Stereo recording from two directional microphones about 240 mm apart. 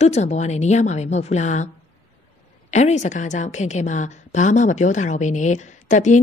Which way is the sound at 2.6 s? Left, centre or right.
Left.